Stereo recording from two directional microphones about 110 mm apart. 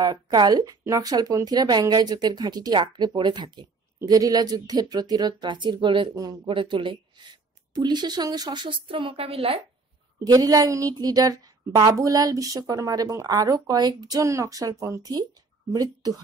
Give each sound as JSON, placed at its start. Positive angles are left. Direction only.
{"t": 0.0, "sound": "a woman's voice", "side_deg": -40}
{"t": 10.1, "sound": "speech", "side_deg": -35}